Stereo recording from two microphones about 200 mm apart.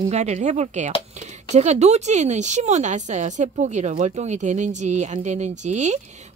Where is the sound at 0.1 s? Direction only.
35° right (ahead or behind).